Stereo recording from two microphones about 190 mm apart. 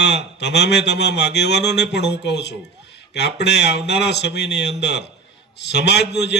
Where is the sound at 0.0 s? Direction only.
65° left (ahead or behind).